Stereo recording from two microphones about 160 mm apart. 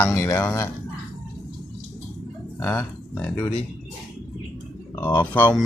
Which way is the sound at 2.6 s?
5° left (ahead or behind).